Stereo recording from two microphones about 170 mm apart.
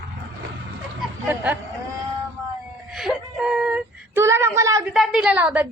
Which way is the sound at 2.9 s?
Centre (ahead or behind).